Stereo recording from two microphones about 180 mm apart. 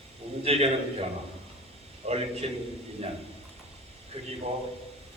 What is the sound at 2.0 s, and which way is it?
Speech, 35° right (ahead or behind).